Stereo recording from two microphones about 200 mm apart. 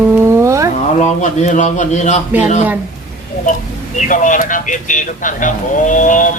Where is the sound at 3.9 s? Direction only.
40° left (ahead or behind).